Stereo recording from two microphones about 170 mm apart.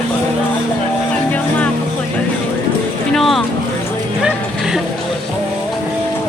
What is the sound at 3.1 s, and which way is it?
Vehicle, centre (ahead or behind).